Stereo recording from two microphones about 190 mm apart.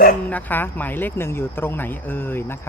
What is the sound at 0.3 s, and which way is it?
Speech, 10° left (ahead or behind).